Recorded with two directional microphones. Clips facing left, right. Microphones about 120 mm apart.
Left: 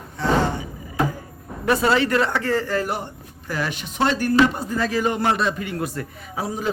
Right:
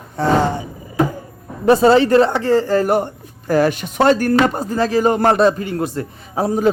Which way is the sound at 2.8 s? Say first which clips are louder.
Right 10 dB; 50° right (ahead or behind).